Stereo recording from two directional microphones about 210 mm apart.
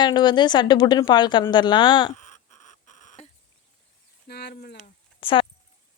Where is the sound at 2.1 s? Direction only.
35° left (ahead or behind).